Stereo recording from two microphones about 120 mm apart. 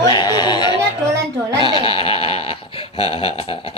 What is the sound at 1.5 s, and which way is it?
Bleat, 45° left (ahead or behind).